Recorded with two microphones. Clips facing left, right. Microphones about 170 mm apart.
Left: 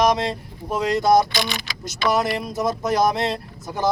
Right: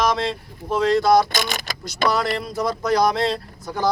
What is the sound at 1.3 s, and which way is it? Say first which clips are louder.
Speech: even; 45° right (ahead or behind).